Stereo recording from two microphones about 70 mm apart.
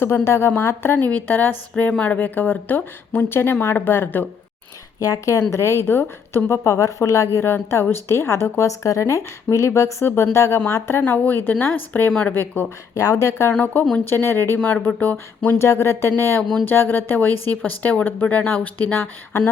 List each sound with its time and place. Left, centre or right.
0.3 s a woman's voice: left
0.9 s a woman's voice: left
4.9 s a woman's voice: left
12.9 s a woman's voice: left
14.0 s a woman's voice: left
14.8 s a woman's voice: left
15.5 s a woman's voice: left
16.4 s a sound: centre
16.6 s a woman's voice: left